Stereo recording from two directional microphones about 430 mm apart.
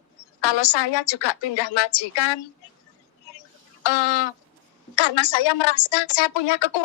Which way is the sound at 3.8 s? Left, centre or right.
Left.